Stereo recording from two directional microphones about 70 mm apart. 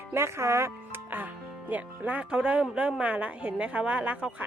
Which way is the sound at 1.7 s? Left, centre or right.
Right.